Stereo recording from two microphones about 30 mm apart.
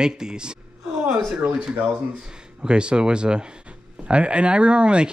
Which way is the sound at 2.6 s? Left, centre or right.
Right.